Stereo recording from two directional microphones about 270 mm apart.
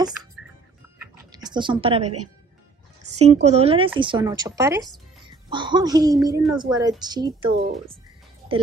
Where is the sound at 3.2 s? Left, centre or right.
Right.